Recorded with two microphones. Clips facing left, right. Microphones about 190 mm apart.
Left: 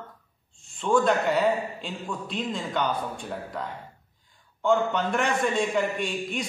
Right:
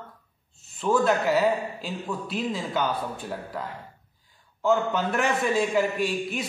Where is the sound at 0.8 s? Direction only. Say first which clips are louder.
Even; 5° right (ahead or behind).